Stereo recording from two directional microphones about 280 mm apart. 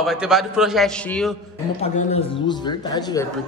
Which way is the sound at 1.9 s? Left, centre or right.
Centre.